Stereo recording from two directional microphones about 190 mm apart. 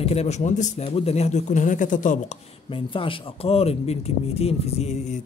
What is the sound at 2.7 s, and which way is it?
Speech, 30° left (ahead or behind).